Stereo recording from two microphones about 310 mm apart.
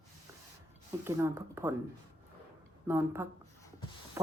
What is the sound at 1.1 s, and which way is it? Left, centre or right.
Speech, centre.